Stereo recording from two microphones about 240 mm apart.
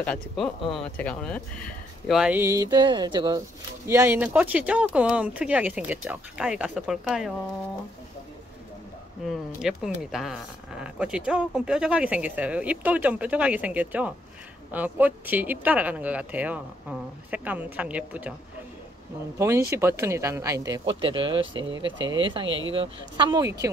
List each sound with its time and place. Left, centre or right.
0.0 s speech: centre
9.3 s speech: centre
19.3 s speech: centre